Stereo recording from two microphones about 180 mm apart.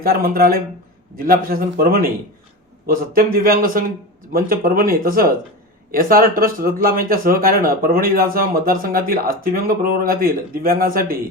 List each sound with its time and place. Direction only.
0.0 s a man's voice: 55° right (ahead or behind)